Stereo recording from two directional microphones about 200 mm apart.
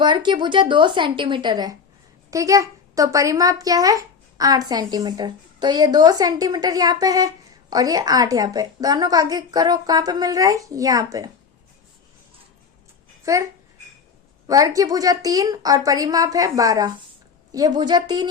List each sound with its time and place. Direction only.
0.0 s speech: 25° right (ahead or behind)
13.2 s a child's voice: 15° right (ahead or behind)